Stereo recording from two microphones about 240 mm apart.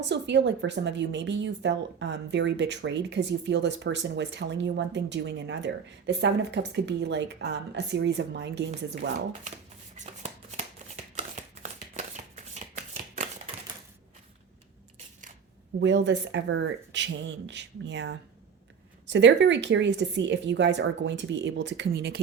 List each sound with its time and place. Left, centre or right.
0.0 s a woman's voice: right
9.9 s shuffling cards: right
15.8 s a woman's voice: right